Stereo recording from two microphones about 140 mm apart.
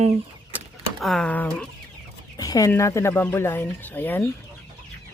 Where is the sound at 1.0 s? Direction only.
5° left (ahead or behind).